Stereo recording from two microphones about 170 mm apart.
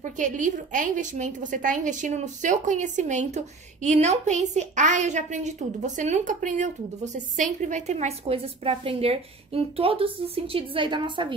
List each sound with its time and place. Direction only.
0.0 s a woman's voice: 50° right (ahead or behind); by 11.3 s 30° right (ahead or behind)